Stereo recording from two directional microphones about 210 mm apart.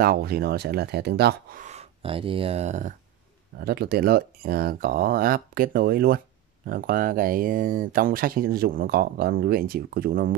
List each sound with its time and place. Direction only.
0.0 s speech: 45° right (ahead or behind)
1.6 s speech: 30° right (ahead or behind)
3.5 s speech: 50° right (ahead or behind)